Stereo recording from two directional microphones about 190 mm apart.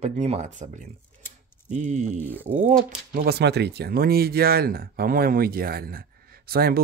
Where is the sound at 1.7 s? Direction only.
40° right (ahead or behind).